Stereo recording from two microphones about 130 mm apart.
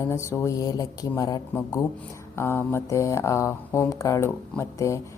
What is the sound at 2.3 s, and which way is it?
A woman's voice, 20° left (ahead or behind).